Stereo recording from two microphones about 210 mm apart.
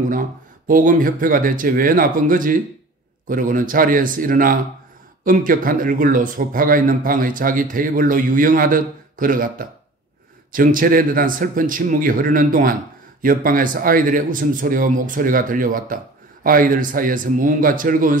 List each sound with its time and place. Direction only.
0.1 s speech: 40° right (ahead or behind)